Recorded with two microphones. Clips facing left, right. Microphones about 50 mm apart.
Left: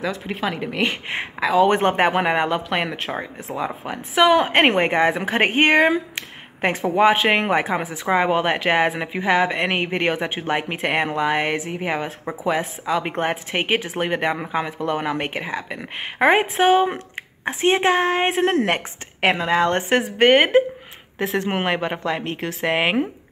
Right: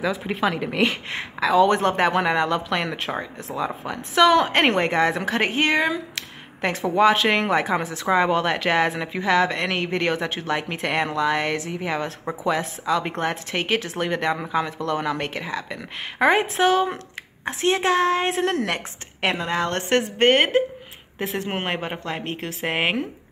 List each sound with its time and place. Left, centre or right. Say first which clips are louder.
0.0 s a woman's voice: right 2 dB; centre
1.4 s a woman's voice: even; centre
1.7 s a woman's voice: left 2 dB; left
5.4 s a woman's voice: left 6 dB; left
6.1 s a sound: left 2 dB; left
6.8 s a woman's voice: left 1 dB; centre
19.2 s a woman's voice: left 5 dB; left
19.9 s a woman's voice: left 1 dB; centre